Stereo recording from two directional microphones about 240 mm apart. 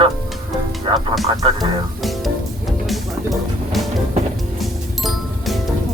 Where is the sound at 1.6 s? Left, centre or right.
Centre.